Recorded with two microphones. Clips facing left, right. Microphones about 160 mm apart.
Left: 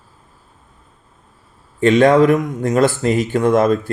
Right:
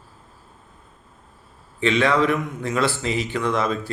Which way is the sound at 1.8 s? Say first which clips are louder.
Left 8 dB; 45° left (ahead or behind).